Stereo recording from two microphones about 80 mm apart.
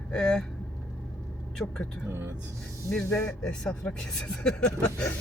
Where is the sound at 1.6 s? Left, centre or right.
Centre.